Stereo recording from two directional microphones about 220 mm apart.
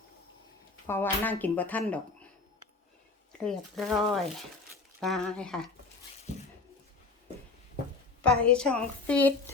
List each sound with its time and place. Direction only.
0.9 s speech: 10° left (ahead or behind)
3.4 s a woman's voice: centre (ahead or behind)
8.2 s a woman's voice: 5° left (ahead or behind)